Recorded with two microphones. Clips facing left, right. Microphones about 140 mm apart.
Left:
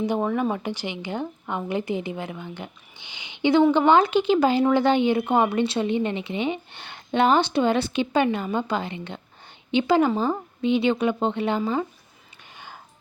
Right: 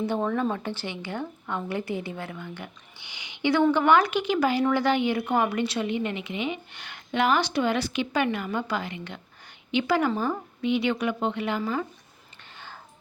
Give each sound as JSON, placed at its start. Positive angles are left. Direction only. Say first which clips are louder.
{"t": 0.0, "sound": "a woman's voice", "louder": "left 2 dB", "side_deg": 15}